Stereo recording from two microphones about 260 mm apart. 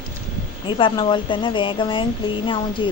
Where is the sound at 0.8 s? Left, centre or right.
Centre.